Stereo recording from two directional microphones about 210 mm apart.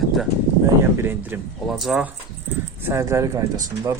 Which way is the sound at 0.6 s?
10° right (ahead or behind).